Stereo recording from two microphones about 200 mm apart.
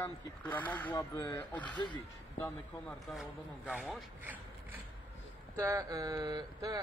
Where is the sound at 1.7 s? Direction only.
25° left (ahead or behind).